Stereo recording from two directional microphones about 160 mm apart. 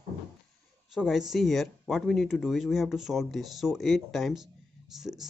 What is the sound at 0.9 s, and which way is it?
Speech, 5° right (ahead or behind).